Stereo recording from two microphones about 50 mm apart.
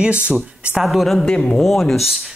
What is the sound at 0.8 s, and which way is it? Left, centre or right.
Speech, centre.